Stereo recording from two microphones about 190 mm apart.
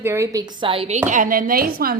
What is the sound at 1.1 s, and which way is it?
Speech, 45° right (ahead or behind).